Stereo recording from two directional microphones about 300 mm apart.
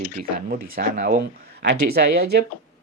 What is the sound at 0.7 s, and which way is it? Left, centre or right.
Speech, right.